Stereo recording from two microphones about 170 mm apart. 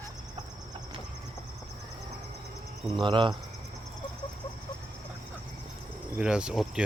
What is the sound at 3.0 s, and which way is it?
Speech, 30° right (ahead or behind).